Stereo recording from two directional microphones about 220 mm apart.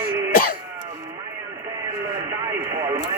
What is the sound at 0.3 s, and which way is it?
Cough, 40° left (ahead or behind).